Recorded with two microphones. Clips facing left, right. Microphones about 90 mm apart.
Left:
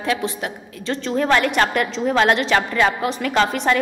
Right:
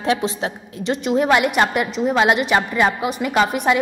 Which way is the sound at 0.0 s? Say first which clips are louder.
Right 3 dB; 25° right (ahead or behind).